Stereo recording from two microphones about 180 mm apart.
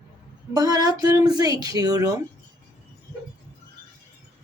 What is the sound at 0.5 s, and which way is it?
A woman's voice, 20° right (ahead or behind).